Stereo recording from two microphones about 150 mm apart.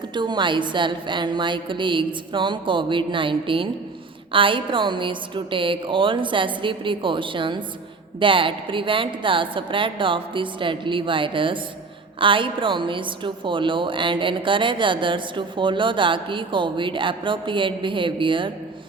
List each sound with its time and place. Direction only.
0.1 s speech: 30° right (ahead or behind)